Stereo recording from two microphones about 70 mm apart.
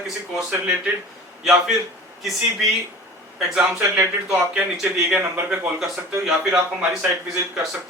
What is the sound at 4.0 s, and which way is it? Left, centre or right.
Speech, centre.